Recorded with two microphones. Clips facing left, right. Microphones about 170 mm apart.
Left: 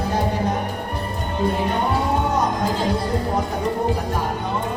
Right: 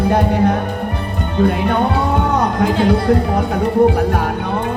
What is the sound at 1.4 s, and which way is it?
Speech, 65° right (ahead or behind).